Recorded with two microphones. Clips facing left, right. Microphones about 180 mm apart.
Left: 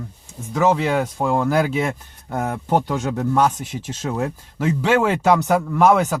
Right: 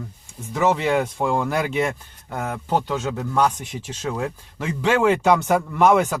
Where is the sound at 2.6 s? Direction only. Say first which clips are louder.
Left 2 dB; 10° left (ahead or behind).